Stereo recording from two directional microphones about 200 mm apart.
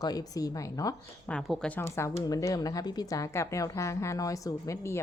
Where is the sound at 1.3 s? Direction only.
Centre (ahead or behind).